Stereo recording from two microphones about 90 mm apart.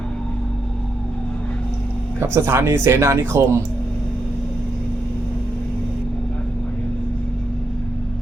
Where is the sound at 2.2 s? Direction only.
30° right (ahead or behind).